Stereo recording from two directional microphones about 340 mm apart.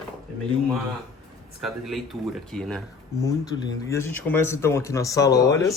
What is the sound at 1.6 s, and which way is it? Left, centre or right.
Speech, centre.